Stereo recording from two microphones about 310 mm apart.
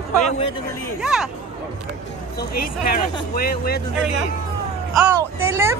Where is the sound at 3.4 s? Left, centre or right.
Left.